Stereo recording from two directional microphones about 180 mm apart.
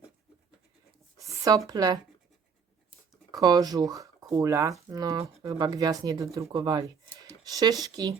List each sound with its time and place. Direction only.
1.5 s speech: 20° right (ahead or behind)
3.3 s speech: 20° right (ahead or behind)